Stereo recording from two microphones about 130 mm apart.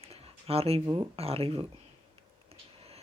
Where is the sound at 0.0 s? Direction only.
50° right (ahead or behind).